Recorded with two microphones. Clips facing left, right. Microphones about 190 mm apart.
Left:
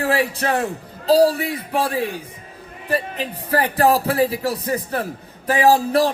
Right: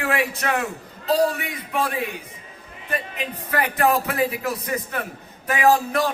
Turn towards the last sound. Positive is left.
turn(degrees=35)  # may be behind; listen again after turning